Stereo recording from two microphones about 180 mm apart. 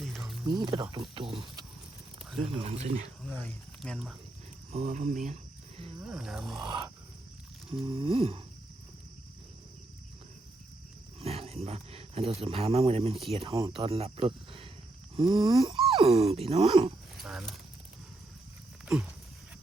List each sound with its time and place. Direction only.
0.0 s a sound: centre (ahead or behind)
0.6 s a sound: 25° right (ahead or behind)
2.4 s speech: 35° right (ahead or behind)
3.8 s speech: centre (ahead or behind)
4.7 s speech: 40° right (ahead or behind)
6.0 s speech: 5° right (ahead or behind)
7.7 s a sound: 30° right (ahead or behind)
11.2 s speech: 35° right (ahead or behind)
17.2 s clip-clop: centre (ahead or behind)